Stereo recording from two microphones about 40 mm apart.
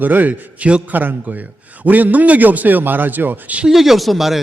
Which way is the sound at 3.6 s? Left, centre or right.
Centre.